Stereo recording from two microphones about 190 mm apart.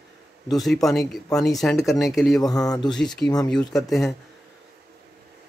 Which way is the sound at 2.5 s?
20° left (ahead or behind).